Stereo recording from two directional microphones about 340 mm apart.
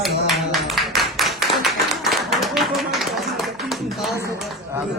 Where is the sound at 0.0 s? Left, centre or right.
Centre.